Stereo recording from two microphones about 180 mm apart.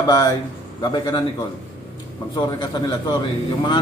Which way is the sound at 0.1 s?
20° left (ahead or behind).